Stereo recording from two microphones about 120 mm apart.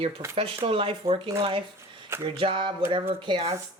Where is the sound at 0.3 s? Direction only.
50° right (ahead or behind).